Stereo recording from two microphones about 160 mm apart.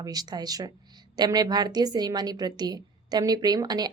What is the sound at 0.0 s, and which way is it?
A woman's voice, 25° right (ahead or behind).